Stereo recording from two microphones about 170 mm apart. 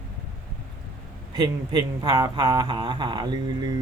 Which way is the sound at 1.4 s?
25° right (ahead or behind).